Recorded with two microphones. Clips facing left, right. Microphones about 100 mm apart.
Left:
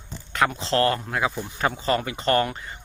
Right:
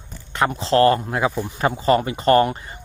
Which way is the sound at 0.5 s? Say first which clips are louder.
Right 6 dB; 35° right (ahead or behind).